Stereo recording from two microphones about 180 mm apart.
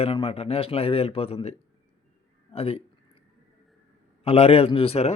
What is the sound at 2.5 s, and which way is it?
Speech, 35° left (ahead or behind).